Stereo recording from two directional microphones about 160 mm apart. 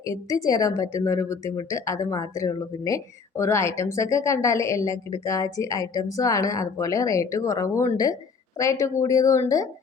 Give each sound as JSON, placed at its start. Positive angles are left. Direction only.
{"t": 0.0, "sound": "speech", "side_deg": 20}